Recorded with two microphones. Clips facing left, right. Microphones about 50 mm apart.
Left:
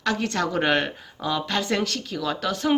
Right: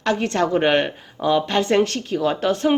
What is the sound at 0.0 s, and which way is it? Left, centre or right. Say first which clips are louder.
Speech: right 4 dB; right.